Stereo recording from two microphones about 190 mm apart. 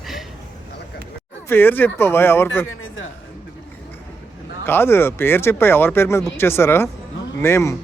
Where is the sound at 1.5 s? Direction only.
10° left (ahead or behind).